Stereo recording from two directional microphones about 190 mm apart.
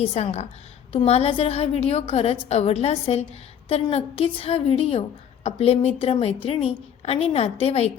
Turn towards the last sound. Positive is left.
turn(degrees=30)  # may be behind; listen again after turning